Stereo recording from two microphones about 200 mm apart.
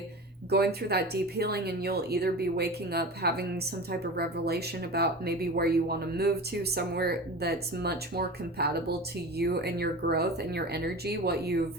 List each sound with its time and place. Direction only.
0.5 s speech: 55° right (ahead or behind)